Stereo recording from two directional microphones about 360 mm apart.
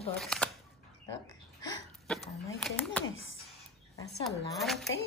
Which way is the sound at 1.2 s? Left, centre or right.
Centre.